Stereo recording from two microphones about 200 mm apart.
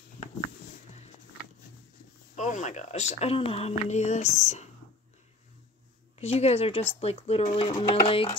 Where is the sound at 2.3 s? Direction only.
35° left (ahead or behind).